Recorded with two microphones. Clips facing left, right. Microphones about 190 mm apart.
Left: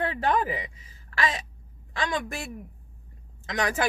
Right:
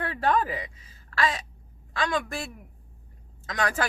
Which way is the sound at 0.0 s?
20° left (ahead or behind).